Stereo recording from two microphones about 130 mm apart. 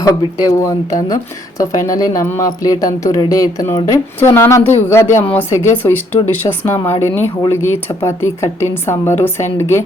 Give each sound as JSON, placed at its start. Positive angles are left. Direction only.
{"t": 0.0, "sound": "speech", "side_deg": 25}